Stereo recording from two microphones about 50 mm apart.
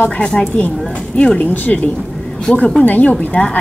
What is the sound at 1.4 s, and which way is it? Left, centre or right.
Speech, left.